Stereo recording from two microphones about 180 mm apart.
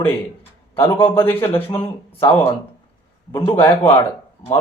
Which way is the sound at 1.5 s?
30° left (ahead or behind).